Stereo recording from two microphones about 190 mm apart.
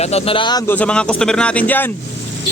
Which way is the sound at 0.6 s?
10° left (ahead or behind).